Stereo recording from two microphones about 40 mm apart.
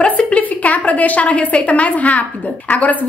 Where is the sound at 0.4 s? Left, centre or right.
Left.